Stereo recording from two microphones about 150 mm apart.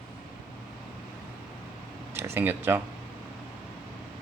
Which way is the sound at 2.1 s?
15° right (ahead or behind).